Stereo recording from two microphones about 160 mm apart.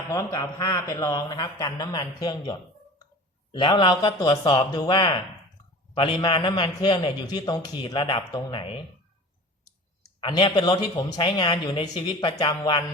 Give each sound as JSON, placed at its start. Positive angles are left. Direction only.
{"t": 0.1, "sound": "a man's voice", "side_deg": 20}
{"t": 10.2, "sound": "a man's voice", "side_deg": 30}